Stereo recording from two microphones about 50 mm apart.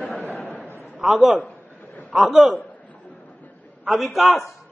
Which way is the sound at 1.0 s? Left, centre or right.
Centre.